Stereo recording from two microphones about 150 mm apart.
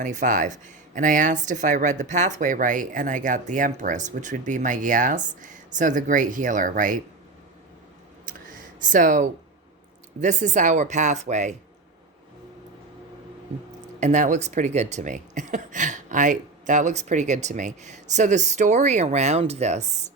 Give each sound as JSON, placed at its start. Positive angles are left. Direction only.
{"t": 0.0, "sound": "speech", "side_deg": -55}
{"t": 8.3, "sound": "a sound", "side_deg": -65}
{"t": 10.2, "sound": "speech", "side_deg": -55}
{"t": 14.0, "sound": "speech", "side_deg": -55}